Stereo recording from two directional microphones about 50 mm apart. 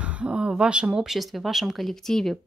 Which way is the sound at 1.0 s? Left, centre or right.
Centre.